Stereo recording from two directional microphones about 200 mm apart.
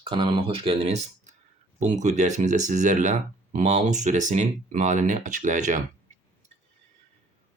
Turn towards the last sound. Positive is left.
turn(degrees=-40)  # may be behind; listen again after turning